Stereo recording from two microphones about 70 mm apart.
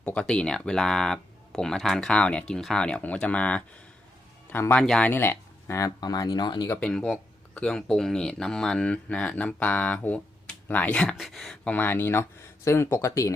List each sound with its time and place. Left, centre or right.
0.0 s speech: centre
4.8 s speech: centre
5.0 s speech: left
5.8 s speech: left
6.7 s speech: centre
11.2 s speech: centre
11.6 s speech: left
13.1 s speech: left